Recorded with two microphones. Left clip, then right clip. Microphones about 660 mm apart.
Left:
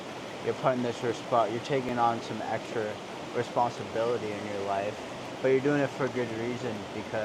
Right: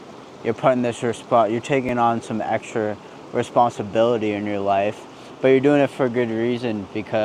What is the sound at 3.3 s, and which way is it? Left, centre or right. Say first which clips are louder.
Speech: right 10 dB; right.